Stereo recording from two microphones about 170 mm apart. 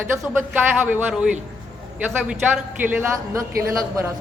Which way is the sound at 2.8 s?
15° right (ahead or behind).